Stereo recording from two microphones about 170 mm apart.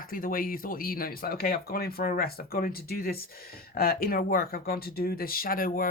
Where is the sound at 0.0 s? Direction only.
55° left (ahead or behind).